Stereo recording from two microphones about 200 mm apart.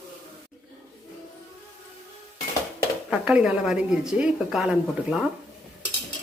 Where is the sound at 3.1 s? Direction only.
5° right (ahead or behind).